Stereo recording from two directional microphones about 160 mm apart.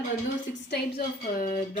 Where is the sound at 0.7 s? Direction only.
70° left (ahead or behind).